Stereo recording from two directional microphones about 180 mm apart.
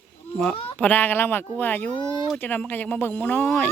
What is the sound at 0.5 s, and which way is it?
Speech, 30° left (ahead or behind).